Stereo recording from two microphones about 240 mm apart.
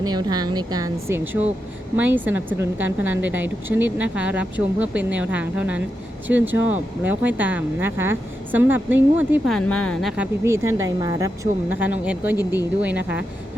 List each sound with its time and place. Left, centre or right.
0.0 s speech: centre
9.6 s speech: centre